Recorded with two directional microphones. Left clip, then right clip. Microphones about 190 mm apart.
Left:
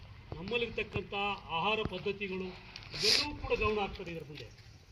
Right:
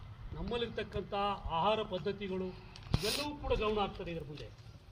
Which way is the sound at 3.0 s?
Centre (ahead or behind).